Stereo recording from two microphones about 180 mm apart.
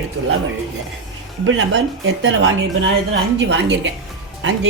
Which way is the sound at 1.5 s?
85° right.